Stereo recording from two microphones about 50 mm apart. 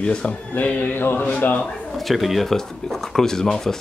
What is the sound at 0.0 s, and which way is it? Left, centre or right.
Speech, centre.